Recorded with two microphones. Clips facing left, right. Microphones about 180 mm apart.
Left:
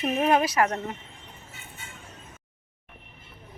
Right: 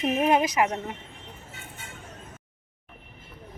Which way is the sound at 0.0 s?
15° right (ahead or behind).